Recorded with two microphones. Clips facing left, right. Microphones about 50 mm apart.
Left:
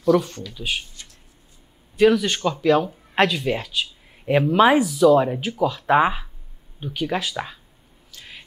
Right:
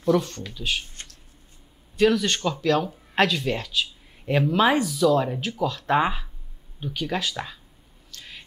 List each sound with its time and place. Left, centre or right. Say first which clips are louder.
0.1 s speech: left 3 dB; centre
2.0 s speech: left 3 dB; centre
8.1 s bird: left 1 dB; centre